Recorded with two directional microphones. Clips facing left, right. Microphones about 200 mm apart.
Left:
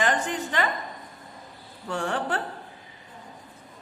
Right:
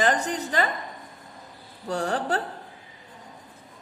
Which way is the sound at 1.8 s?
40° right (ahead or behind).